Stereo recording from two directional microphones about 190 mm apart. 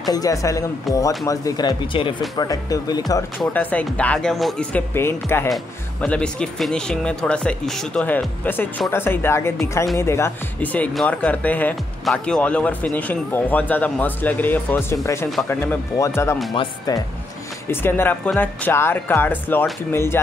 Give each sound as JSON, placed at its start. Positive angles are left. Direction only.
{"t": 0.0, "sound": "speech", "side_deg": 20}
{"t": 3.3, "sound": "speech", "side_deg": 10}